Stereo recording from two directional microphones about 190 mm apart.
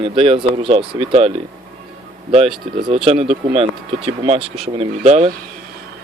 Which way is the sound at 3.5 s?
30° right (ahead or behind).